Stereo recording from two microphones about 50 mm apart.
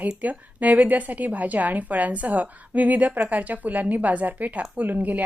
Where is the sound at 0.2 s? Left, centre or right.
Right.